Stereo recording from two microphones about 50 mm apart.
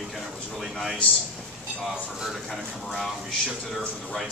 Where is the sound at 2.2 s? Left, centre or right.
Centre.